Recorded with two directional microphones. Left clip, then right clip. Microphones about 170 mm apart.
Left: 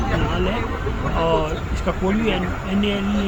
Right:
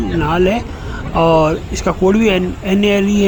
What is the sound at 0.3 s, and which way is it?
Speech, 45° right (ahead or behind).